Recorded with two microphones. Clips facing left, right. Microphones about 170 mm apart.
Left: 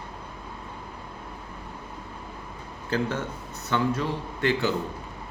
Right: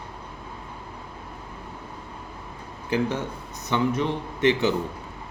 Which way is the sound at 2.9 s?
15° right (ahead or behind).